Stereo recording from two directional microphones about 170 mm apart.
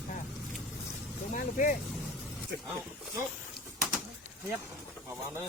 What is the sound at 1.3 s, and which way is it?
Speech, 50° left (ahead or behind).